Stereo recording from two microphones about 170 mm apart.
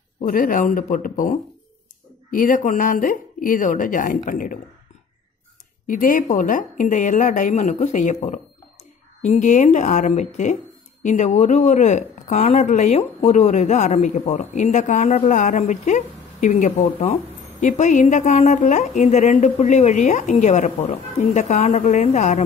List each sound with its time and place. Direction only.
0.2 s speech: 55° left (ahead or behind)
5.9 s speech: 55° left (ahead or behind)